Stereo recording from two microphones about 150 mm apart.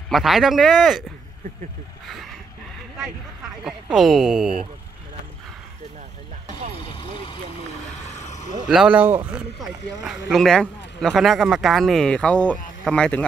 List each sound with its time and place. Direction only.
0.1 s speech: centre (ahead or behind)
3.6 s speech: centre (ahead or behind)
6.9 s vehicle: 35° left (ahead or behind)
8.1 s a sound: 50° left (ahead or behind)
8.6 s speech: 5° right (ahead or behind)
9.6 s speech: centre (ahead or behind)